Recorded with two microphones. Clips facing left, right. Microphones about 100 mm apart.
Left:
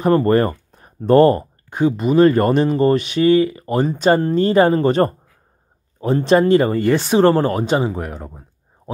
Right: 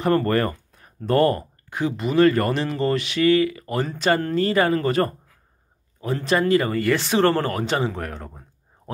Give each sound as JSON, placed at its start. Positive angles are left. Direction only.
{"t": 0.0, "sound": "speech", "side_deg": 20}